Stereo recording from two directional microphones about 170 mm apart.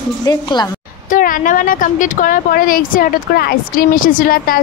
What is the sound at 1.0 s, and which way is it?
Speech, 50° left (ahead or behind).